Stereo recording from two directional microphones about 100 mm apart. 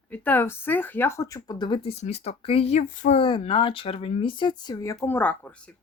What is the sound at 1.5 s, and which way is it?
Speech, 50° left (ahead or behind).